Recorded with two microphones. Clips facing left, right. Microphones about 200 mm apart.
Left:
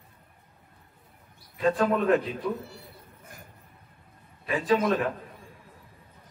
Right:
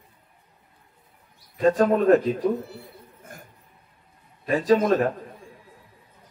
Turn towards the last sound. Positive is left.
turn(degrees=-40)  # may be behind; listen again after turning